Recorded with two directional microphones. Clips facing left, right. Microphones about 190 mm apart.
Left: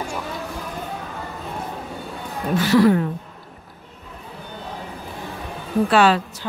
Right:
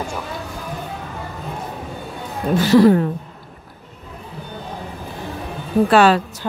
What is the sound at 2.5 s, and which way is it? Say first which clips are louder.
Speech: right 4 dB; 30° right (ahead or behind).